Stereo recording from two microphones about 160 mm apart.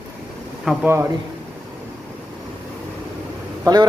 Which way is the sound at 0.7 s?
5° right (ahead or behind).